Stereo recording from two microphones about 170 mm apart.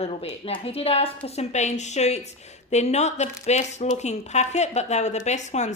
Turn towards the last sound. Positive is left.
turn(degrees=45)  # may be behind; listen again after turning